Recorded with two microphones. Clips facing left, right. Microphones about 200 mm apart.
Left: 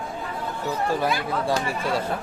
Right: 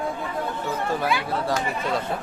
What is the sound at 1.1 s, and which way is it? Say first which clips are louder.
Speech: even; 40° left (ahead or behind).